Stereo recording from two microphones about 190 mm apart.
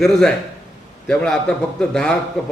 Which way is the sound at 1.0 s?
5° left (ahead or behind).